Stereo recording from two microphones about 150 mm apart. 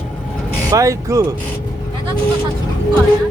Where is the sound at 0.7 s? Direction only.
20° right (ahead or behind).